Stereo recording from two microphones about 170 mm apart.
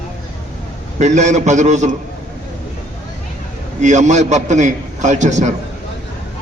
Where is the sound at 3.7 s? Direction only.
45° right (ahead or behind).